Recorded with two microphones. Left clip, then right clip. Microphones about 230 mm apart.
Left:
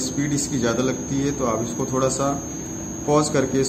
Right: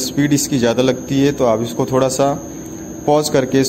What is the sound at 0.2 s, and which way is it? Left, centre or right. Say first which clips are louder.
A man's voice: right 9 dB; right.